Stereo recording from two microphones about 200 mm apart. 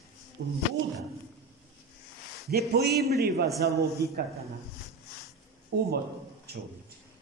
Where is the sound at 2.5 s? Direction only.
55° right (ahead or behind).